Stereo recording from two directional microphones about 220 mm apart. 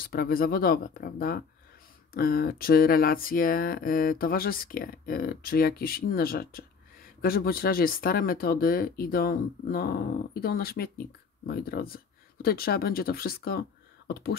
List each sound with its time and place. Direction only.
0.0 s speech: 40° left (ahead or behind)